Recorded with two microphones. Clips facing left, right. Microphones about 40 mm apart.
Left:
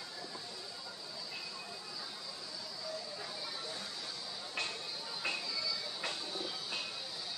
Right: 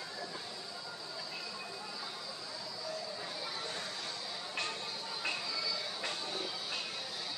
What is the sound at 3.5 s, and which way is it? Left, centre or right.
Music, right.